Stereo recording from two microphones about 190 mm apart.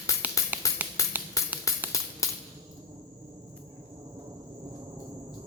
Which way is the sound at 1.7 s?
15° left (ahead or behind).